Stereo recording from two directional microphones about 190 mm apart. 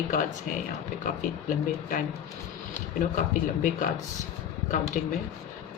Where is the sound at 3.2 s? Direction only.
45° left (ahead or behind).